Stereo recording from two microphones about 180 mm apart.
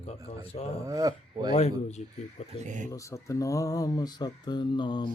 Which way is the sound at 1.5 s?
35° left (ahead or behind).